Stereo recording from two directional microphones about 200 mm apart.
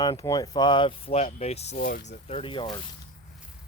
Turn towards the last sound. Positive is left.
turn(degrees=20)  # may be behind; listen again after turning